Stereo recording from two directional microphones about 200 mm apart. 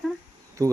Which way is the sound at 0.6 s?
15° right (ahead or behind).